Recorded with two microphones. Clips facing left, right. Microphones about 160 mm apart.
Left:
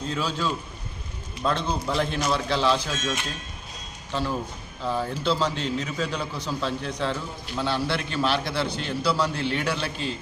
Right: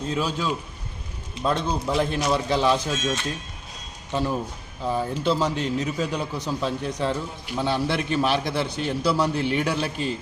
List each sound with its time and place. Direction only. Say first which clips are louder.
0.1 s a man's voice: right 2 dB; 15° right (ahead or behind)